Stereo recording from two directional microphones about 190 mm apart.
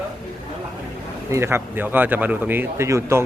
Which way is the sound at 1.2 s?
15° right (ahead or behind).